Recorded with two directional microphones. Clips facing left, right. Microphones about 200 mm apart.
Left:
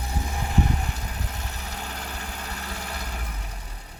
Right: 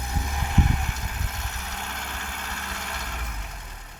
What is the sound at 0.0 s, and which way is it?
Vehicle, 35° left (ahead or behind).